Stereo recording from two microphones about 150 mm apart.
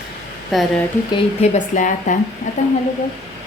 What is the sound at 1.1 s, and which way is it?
A woman's voice, 50° left (ahead or behind).